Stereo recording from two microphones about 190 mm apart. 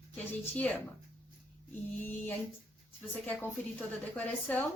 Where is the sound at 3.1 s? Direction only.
10° left (ahead or behind).